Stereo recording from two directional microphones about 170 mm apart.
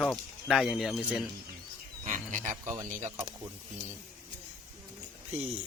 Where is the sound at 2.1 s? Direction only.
50° right (ahead or behind).